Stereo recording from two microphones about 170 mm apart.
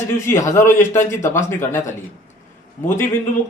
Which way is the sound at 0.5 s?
15° left (ahead or behind).